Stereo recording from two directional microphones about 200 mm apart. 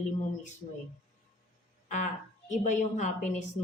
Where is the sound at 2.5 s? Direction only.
35° left (ahead or behind).